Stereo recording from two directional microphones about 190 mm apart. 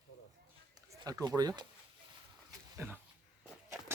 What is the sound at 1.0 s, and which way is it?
Speech, 20° right (ahead or behind).